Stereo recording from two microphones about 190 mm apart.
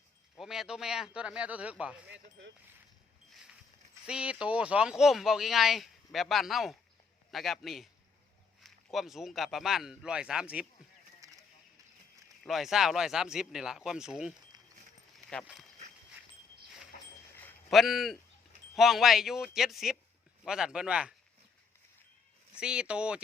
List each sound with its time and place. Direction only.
0.3 s speech: centre (ahead or behind)
4.0 s speech: 5° right (ahead or behind)
11.2 s a sound: 15° right (ahead or behind)
12.4 s speech: centre (ahead or behind)
17.4 s a sound: centre (ahead or behind)
18.8 s speech: centre (ahead or behind)
22.5 s speech: 5° right (ahead or behind)